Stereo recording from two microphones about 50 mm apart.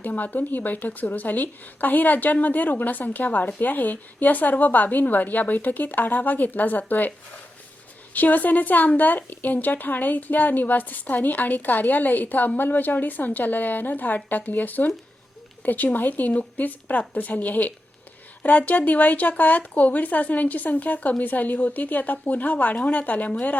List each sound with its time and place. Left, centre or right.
0.0 s a woman's voice: left
8.1 s a woman's voice: left